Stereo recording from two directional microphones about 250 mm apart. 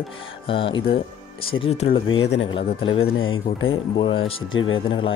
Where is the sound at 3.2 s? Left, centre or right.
Left.